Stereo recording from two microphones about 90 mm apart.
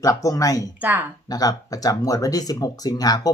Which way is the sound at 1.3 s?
45° left (ahead or behind).